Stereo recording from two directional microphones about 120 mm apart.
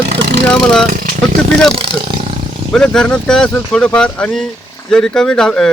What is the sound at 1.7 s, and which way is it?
Speech, 45° right (ahead or behind).